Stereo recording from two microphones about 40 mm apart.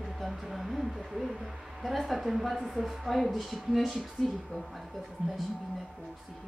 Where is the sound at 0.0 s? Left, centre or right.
Centre.